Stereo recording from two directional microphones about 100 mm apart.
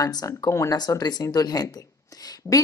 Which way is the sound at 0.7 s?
45° left (ahead or behind).